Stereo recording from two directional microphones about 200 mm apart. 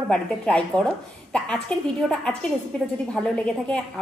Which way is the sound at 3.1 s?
5° left (ahead or behind).